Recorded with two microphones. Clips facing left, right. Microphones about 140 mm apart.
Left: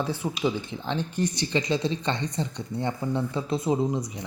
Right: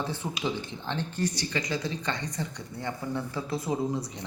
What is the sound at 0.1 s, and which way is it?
Speech, 10° left (ahead or behind).